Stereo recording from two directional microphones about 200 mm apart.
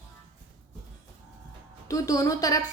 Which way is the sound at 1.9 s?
15° left (ahead or behind).